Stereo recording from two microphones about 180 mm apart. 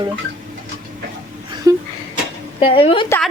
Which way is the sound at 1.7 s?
20° right (ahead or behind).